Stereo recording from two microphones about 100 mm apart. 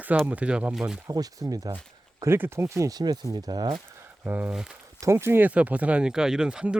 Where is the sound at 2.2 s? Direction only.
25° right (ahead or behind); by 3.7 s 40° right (ahead or behind).